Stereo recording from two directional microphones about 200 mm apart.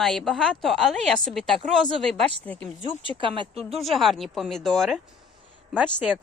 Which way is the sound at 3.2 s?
25° right (ahead or behind).